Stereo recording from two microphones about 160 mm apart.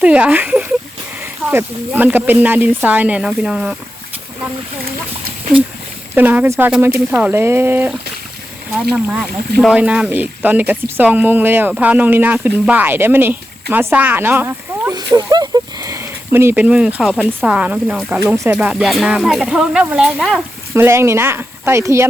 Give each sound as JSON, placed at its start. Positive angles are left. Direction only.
{"t": 0.0, "sound": "speech", "side_deg": -5}
{"t": 6.1, "sound": "speech", "side_deg": -10}
{"t": 9.6, "sound": "speech", "side_deg": -5}
{"t": 20.7, "sound": "speech", "side_deg": -15}